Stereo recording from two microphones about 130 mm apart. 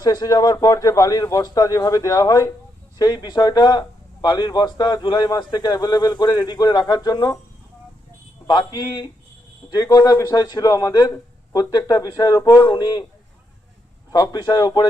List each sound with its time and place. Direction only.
0.0 s speech: 30° left (ahead or behind)
8.4 s speech: 35° left (ahead or behind)
14.1 s speech: 30° left (ahead or behind)